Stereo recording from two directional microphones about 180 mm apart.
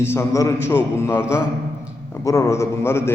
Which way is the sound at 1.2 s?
5° right (ahead or behind).